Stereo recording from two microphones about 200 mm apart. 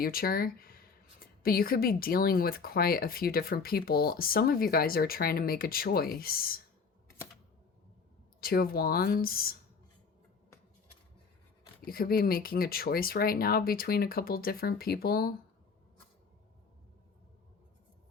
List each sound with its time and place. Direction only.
0.0 s speech: 45° left (ahead or behind)
8.4 s speech: 50° left (ahead or behind)
11.9 s speech: 50° left (ahead or behind)